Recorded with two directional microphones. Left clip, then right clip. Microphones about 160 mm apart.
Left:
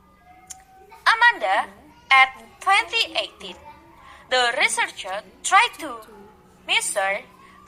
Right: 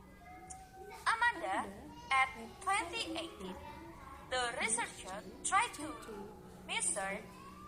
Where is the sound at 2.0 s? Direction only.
50° left (ahead or behind).